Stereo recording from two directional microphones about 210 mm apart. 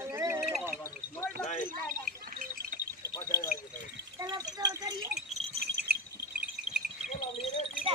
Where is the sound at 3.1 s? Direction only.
15° left (ahead or behind).